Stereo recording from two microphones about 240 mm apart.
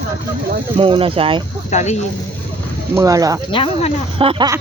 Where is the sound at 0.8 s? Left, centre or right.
Right.